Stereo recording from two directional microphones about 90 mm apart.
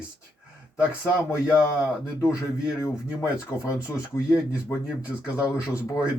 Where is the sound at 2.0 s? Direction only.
30° left (ahead or behind).